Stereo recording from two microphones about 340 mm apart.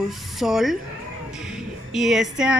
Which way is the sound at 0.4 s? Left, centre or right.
Centre.